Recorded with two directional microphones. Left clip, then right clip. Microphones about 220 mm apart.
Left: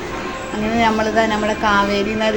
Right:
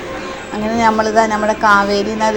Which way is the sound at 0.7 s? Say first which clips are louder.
Right 4 dB; 10° right (ahead or behind).